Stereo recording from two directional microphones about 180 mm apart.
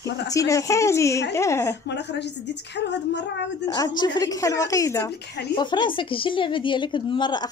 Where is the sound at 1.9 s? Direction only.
70° left (ahead or behind).